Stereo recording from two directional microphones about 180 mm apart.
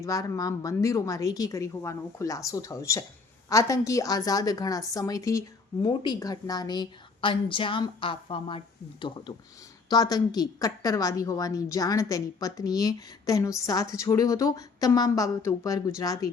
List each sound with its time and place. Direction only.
0.0 s a woman's voice: 15° left (ahead or behind)